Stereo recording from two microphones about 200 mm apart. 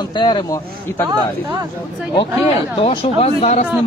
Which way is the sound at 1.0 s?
20° right (ahead or behind).